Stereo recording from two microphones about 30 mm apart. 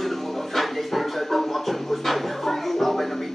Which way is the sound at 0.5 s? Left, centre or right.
Centre.